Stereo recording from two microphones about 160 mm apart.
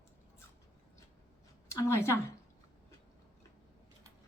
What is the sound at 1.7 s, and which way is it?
Speech, 20° left (ahead or behind).